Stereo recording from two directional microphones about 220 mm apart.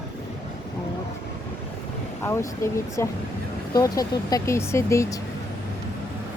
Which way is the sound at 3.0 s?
10° left (ahead or behind).